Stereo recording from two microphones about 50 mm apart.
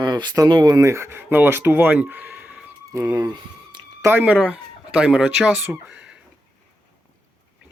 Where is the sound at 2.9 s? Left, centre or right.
Right.